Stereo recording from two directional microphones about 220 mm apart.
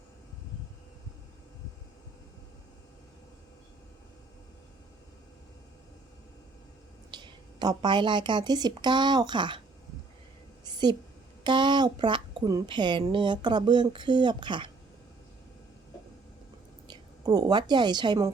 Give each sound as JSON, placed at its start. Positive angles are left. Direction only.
{"t": 7.1, "sound": "a woman's voice", "side_deg": -20}
{"t": 10.6, "sound": "a sound", "side_deg": -20}
{"t": 11.4, "sound": "a woman's voice", "side_deg": -20}
{"t": 16.9, "sound": "a woman's voice", "side_deg": -15}